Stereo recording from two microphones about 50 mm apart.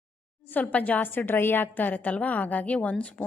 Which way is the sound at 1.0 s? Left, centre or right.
Left.